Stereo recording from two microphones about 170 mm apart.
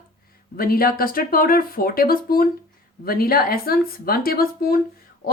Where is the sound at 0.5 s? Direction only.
60° left (ahead or behind).